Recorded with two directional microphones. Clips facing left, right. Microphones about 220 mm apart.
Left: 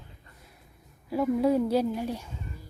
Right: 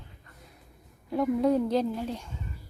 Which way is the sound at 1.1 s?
5° left (ahead or behind).